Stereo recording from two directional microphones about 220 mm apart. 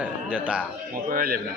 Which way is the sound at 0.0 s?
5° right (ahead or behind).